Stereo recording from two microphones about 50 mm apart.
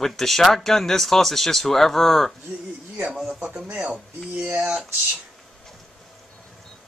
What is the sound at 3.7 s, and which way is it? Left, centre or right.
Speech, right.